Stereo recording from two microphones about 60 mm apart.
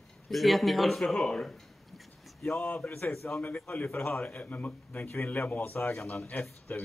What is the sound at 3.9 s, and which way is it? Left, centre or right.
Speech, left.